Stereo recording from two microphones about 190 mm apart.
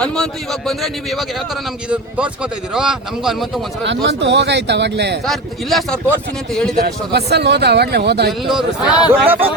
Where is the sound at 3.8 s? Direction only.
65° right (ahead or behind).